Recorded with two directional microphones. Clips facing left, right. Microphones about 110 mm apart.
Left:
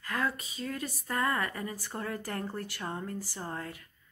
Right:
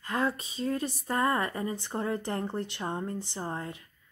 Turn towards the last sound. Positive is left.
turn(degrees=-25)  # may be behind; listen again after turning